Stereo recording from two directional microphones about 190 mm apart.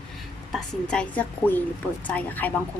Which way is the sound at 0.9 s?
5° left (ahead or behind).